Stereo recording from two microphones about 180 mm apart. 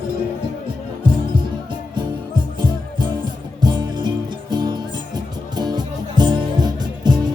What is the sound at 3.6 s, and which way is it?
Music, 25° right (ahead or behind).